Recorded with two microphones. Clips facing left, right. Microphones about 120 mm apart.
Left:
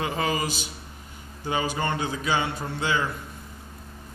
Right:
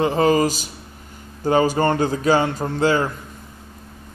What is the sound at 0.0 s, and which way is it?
A man's voice, 40° right (ahead or behind).